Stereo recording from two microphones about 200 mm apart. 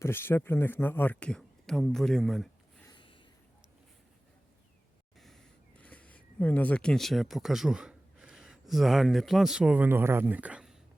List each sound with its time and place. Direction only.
0.0 s speech: 10° left (ahead or behind)
2.8 s a sound: 25° left (ahead or behind)
5.2 s speech: 5° left (ahead or behind)